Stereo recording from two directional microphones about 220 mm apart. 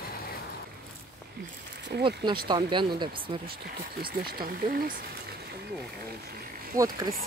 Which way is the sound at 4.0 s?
45° right (ahead or behind).